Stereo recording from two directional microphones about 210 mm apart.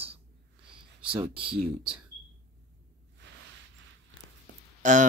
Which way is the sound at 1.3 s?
25° right (ahead or behind).